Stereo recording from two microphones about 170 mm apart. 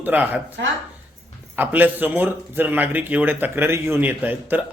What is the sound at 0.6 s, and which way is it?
Speech, 90° right.